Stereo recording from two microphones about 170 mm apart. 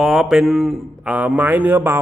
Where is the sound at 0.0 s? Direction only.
Centre (ahead or behind).